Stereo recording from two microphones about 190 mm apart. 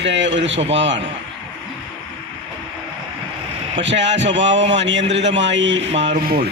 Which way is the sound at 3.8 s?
70° right (ahead or behind).